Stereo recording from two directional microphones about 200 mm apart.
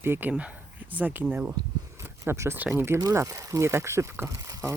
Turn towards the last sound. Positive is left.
turn(degrees=-15)  # may be behind; listen again after turning